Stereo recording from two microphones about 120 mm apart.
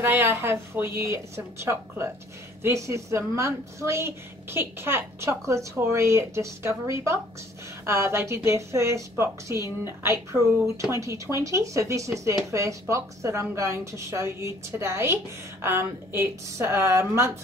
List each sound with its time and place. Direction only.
0.0 s a woman's voice: 15° right (ahead or behind)